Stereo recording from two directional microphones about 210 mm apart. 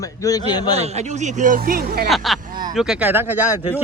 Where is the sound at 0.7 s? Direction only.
30° right (ahead or behind).